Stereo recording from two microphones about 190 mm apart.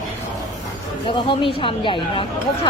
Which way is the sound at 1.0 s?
25° left (ahead or behind).